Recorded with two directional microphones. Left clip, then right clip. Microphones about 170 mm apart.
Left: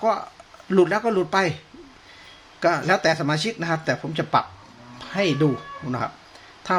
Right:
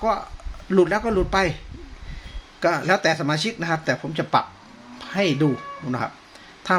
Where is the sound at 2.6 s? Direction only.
Centre (ahead or behind).